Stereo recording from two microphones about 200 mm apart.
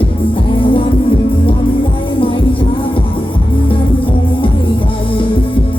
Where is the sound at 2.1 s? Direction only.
25° left (ahead or behind).